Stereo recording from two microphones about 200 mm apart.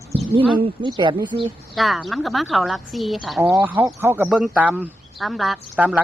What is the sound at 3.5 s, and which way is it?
Speech, 10° right (ahead or behind).